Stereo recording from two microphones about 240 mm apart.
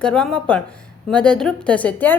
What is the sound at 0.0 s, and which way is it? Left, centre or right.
A woman's voice, centre.